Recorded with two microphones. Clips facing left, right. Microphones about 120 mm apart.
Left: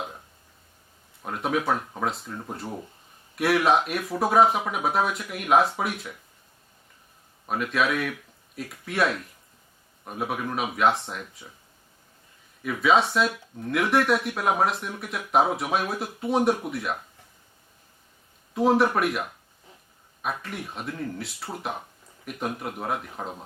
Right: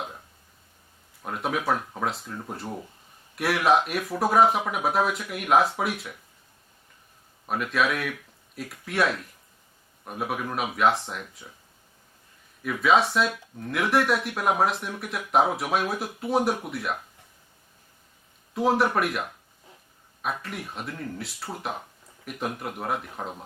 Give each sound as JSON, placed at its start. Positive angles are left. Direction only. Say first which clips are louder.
{"t": 1.2, "sound": "speech", "louder": "left 2 dB", "side_deg": 0}
{"t": 7.4, "sound": "speech", "louder": "even", "side_deg": 0}
{"t": 12.6, "sound": "speech", "louder": "even", "side_deg": 0}
{"t": 18.5, "sound": "speech", "louder": "left 2 dB", "side_deg": 0}
{"t": 20.2, "sound": "speech", "louder": "even", "side_deg": 0}